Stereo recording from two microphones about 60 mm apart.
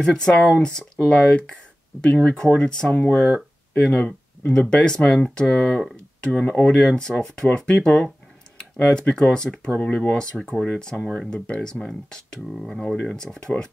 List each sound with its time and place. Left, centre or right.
0.0 s speech: centre
8.5 s computer keyboard: centre
9.1 s speech: centre
10.3 s speech: centre
10.6 s speech: centre